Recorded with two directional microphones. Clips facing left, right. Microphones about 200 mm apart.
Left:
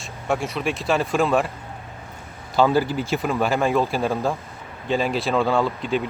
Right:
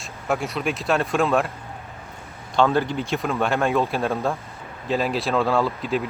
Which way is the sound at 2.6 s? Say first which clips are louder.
Left 1 dB; 5° left (ahead or behind).